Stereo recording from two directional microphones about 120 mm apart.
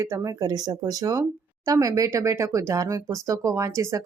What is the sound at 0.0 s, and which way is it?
Speech, 30° right (ahead or behind).